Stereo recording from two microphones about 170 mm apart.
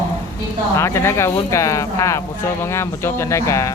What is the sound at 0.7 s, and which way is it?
Speech, 15° left (ahead or behind).